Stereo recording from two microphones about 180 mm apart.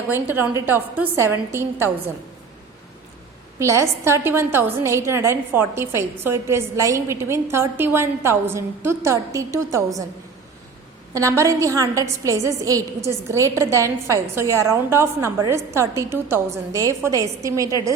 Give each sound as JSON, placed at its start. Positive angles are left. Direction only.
{"t": 0.1, "sound": "a woman's voice", "side_deg": -10}
{"t": 3.6, "sound": "a woman's voice", "side_deg": -15}
{"t": 11.1, "sound": "a woman's voice", "side_deg": -15}